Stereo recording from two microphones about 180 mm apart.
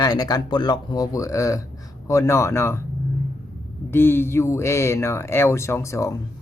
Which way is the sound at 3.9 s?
10° left (ahead or behind).